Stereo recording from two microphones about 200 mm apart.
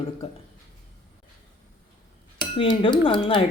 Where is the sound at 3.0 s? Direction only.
25° left (ahead or behind).